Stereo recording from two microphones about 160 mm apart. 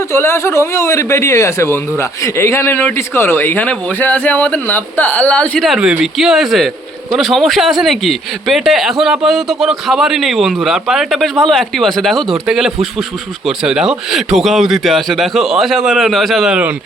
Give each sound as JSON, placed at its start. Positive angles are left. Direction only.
{"t": 0.1, "sound": "a man's voice", "side_deg": 15}